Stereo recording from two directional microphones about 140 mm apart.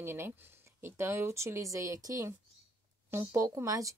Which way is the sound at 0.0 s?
15° right (ahead or behind).